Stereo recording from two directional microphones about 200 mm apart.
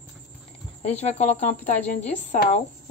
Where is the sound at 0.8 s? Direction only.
30° left (ahead or behind).